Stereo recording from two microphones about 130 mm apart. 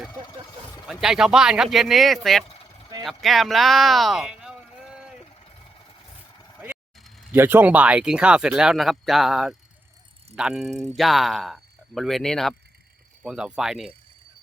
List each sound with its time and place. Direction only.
0.9 s speech: 5° right (ahead or behind)
6.9 s a sound: centre (ahead or behind)
7.3 s speech: 15° right (ahead or behind)
10.7 s speech: 60° right (ahead or behind)
10.9 s speech: centre (ahead or behind)